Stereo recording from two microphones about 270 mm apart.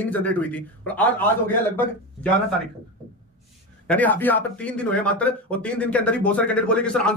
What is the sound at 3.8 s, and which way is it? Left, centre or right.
A man's voice, centre.